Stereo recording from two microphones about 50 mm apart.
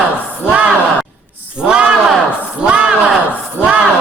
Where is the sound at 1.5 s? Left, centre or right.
Centre.